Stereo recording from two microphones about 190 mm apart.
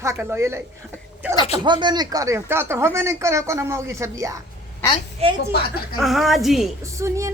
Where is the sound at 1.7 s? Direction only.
25° right (ahead or behind).